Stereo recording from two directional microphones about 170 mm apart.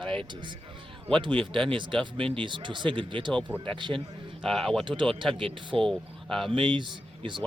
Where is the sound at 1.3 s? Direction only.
30° right (ahead or behind).